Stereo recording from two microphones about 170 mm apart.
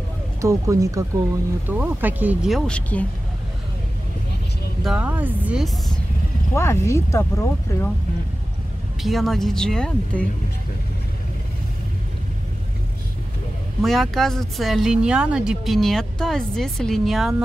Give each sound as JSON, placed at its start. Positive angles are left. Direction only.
{"t": 0.4, "sound": "speech", "side_deg": -20}
{"t": 4.8, "sound": "speech", "side_deg": -5}
{"t": 6.5, "sound": "speech", "side_deg": 15}
{"t": 9.0, "sound": "speech", "side_deg": 0}
{"t": 13.8, "sound": "speech", "side_deg": 0}